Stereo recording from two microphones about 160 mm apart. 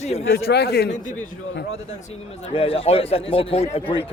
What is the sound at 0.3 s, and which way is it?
Speech, 85° left.